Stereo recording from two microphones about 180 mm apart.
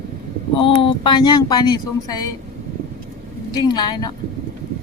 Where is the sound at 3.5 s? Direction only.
20° left (ahead or behind).